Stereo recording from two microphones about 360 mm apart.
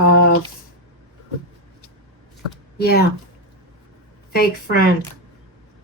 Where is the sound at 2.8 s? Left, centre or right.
Left.